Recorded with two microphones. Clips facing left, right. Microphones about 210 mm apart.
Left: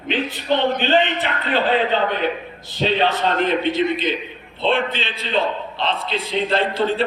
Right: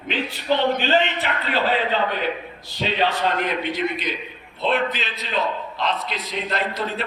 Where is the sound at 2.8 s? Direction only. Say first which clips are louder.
Left 3 dB; 25° left (ahead or behind).